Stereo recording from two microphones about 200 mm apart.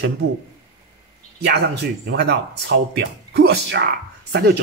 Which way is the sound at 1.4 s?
55° right (ahead or behind).